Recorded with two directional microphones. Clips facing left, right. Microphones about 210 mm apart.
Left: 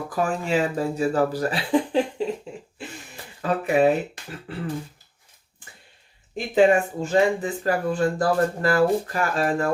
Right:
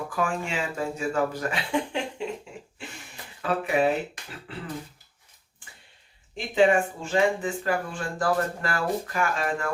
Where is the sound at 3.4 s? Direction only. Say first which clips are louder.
Left 4 dB; 40° left (ahead or behind).